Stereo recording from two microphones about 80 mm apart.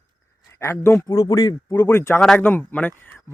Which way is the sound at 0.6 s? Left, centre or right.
Left.